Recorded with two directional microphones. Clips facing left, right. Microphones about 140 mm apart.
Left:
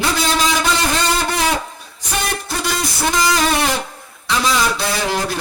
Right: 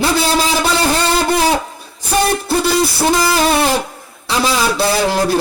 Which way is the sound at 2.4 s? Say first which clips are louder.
Right 8 dB; 30° right (ahead or behind).